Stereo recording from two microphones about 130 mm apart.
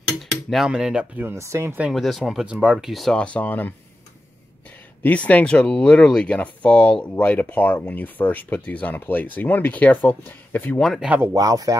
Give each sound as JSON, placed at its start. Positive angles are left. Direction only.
{"t": 0.2, "sound": "cutlery", "side_deg": 0}
{"t": 1.8, "sound": "speech", "side_deg": 0}
{"t": 5.0, "sound": "speech", "side_deg": 10}
{"t": 10.8, "sound": "speech", "side_deg": 0}
{"t": 11.3, "sound": "speech", "side_deg": -30}